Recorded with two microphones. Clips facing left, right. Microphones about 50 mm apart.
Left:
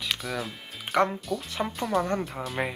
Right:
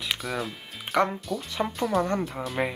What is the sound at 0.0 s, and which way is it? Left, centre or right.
Speech, centre.